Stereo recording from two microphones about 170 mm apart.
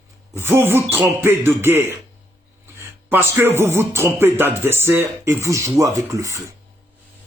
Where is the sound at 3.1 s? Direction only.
15° right (ahead or behind).